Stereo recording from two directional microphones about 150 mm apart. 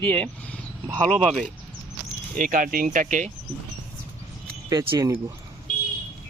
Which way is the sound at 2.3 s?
65° right (ahead or behind).